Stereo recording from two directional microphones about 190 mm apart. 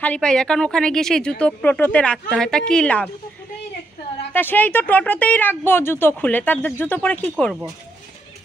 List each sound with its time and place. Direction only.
0.0 s a woman's voice: 5° left (ahead or behind)
4.3 s speech: 10° left (ahead or behind)